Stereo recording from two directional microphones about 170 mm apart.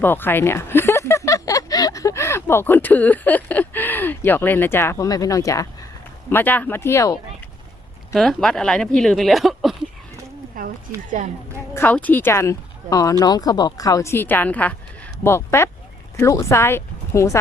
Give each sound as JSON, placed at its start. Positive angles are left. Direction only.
{"t": 0.0, "sound": "speech", "side_deg": 10}
{"t": 8.1, "sound": "speech", "side_deg": 0}
{"t": 10.5, "sound": "a sound", "side_deg": -55}
{"t": 11.7, "sound": "speech", "side_deg": 10}